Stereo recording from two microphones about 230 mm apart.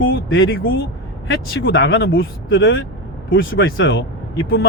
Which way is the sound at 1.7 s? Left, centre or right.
Left.